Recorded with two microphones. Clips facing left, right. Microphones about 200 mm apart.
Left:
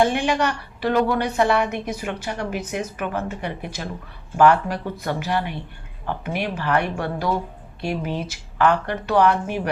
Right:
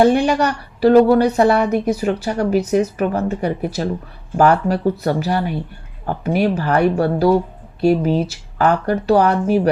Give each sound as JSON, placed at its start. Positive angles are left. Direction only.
{"t": 0.0, "sound": "a woman's voice", "side_deg": -40}